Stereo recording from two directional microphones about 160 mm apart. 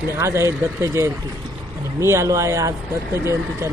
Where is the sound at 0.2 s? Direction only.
15° right (ahead or behind).